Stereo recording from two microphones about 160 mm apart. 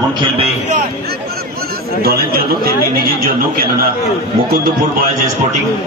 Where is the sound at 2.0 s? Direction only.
70° right (ahead or behind).